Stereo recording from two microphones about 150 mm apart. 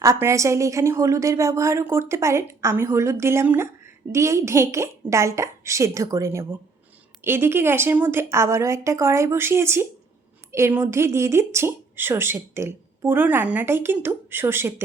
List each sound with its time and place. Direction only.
0.0 s a woman's voice: 20° right (ahead or behind)